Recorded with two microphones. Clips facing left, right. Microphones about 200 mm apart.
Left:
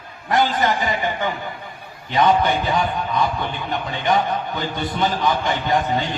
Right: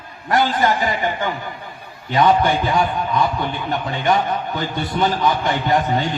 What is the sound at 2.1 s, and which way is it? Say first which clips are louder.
Music: right 2 dB; 50° right (ahead or behind).